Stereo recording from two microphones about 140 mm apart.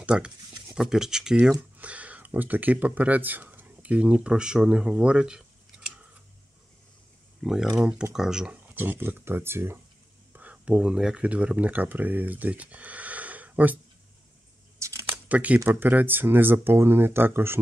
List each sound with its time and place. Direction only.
0.0 s speech: 5° right (ahead or behind)
7.4 s speech: 5° right (ahead or behind)
14.8 s a sound: 20° right (ahead or behind)
15.0 s speech: 10° right (ahead or behind)